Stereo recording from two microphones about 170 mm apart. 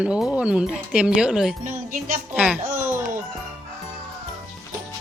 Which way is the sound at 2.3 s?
5° right (ahead or behind).